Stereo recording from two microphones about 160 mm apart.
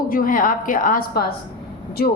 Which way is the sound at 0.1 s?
60° left (ahead or behind).